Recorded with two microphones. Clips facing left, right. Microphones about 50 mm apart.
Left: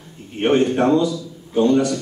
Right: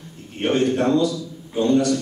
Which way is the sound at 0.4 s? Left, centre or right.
Centre.